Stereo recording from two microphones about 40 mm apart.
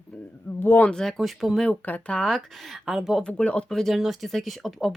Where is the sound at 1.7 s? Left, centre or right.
Left.